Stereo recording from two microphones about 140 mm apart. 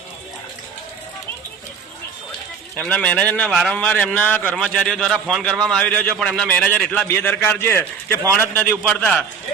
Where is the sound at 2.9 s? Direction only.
10° left (ahead or behind).